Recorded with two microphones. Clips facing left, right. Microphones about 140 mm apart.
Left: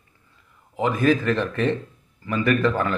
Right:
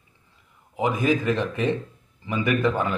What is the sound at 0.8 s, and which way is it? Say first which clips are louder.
Speech: left 2 dB; 15° right (ahead or behind).